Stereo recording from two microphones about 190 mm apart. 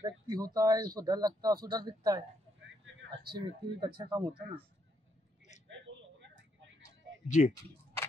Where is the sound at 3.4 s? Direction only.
25° right (ahead or behind).